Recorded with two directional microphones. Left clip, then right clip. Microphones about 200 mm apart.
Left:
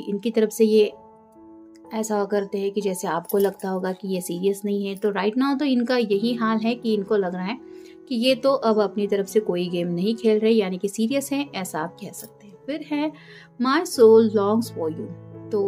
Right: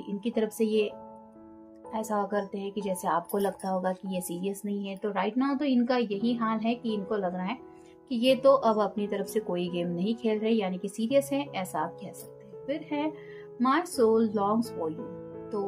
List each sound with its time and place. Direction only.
0.2 s speech: 45° left (ahead or behind)